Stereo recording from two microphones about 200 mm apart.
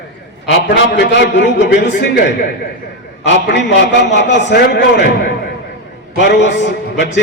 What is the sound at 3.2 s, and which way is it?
A man's voice, 65° left (ahead or behind).